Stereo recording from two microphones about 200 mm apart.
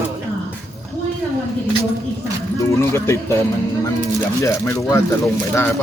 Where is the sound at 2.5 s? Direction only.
15° left (ahead or behind).